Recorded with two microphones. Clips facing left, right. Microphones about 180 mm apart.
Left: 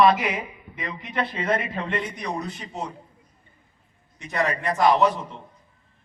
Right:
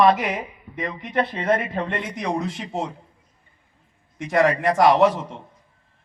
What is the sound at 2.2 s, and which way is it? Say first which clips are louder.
Speech: right 5 dB; 85° right.